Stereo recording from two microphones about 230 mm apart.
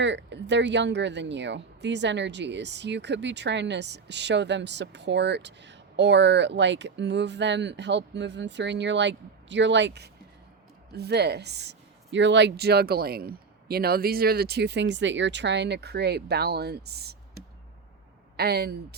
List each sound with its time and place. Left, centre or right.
0.0 s speech: right
18.3 s speech: right